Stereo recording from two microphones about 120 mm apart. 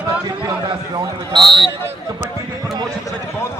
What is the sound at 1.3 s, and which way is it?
Speech, 40° right (ahead or behind).